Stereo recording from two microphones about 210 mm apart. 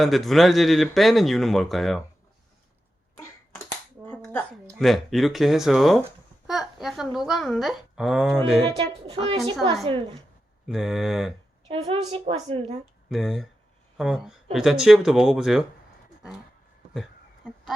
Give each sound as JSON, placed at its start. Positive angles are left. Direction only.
{"t": 0.0, "sound": "speech", "side_deg": 0}
{"t": 3.2, "sound": "a sound", "side_deg": 10}
{"t": 4.8, "sound": "speech", "side_deg": 0}
{"t": 8.7, "sound": "a woman's voice", "side_deg": -30}
{"t": 10.7, "sound": "speech", "side_deg": 0}
{"t": 11.7, "sound": "a woman's voice", "side_deg": -25}
{"t": 13.1, "sound": "speech", "side_deg": 0}